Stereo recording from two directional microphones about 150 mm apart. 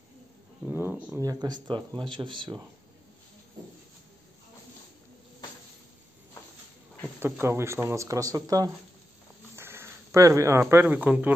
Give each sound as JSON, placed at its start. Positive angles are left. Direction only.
{"t": 0.7, "sound": "speech", "side_deg": -10}
{"t": 7.2, "sound": "speech", "side_deg": -15}